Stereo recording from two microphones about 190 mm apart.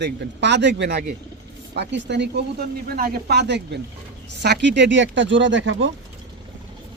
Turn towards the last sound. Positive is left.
turn(degrees=-75)  # may be behind; listen again after turning